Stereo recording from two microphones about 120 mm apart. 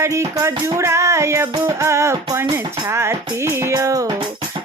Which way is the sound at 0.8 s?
20° right (ahead or behind).